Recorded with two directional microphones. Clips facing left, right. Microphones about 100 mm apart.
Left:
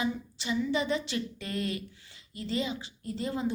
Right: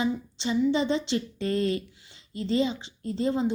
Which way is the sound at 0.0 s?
30° right (ahead or behind).